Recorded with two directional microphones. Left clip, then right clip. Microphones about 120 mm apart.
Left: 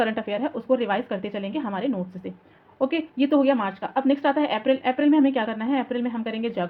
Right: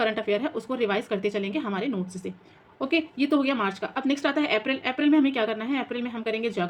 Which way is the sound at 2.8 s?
50° left (ahead or behind).